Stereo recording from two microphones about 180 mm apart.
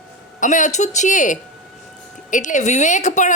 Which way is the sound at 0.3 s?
45° left (ahead or behind).